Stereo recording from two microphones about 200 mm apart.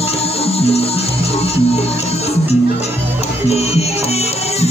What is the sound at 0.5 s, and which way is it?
Music, 30° left (ahead or behind).